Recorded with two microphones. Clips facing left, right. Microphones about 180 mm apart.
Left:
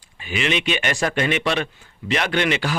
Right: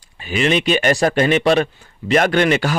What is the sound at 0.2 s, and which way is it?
A man's voice, 40° right (ahead or behind).